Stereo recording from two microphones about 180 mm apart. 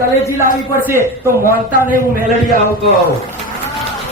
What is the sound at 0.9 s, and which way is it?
A man's voice, 15° right (ahead or behind).